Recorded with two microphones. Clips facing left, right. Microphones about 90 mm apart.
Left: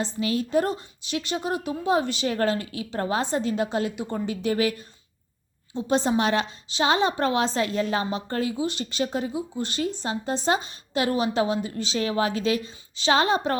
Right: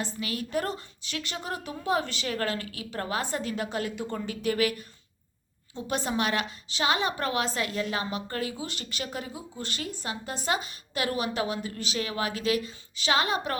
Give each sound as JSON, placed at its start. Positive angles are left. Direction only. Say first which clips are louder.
{"t": 0.0, "sound": "a woman's voice", "louder": "left 7 dB", "side_deg": 25}